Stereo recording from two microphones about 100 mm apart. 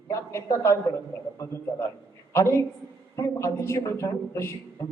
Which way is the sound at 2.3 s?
30° left (ahead or behind).